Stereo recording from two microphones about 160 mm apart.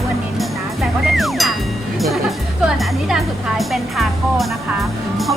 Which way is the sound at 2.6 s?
Centre (ahead or behind).